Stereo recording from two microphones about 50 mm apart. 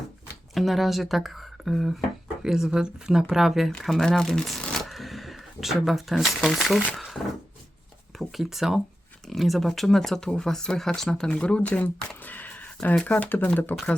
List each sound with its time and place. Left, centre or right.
0.5 s speech: centre
4.0 s speech: centre
4.7 s shuffling cards: centre
6.6 s speech: centre
8.2 s speech: centre
11.3 s speech: left